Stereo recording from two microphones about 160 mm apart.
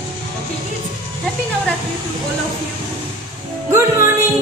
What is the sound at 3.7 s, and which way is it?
Music, 15° right (ahead or behind).